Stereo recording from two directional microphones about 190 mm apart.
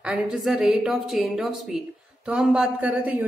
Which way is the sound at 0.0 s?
5° right (ahead or behind).